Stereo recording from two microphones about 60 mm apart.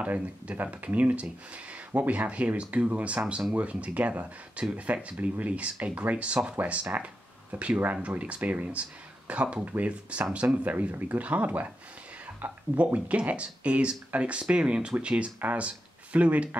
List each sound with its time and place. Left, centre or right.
0.0 s speech: right
6.9 s speech: right
7.5 s speech: right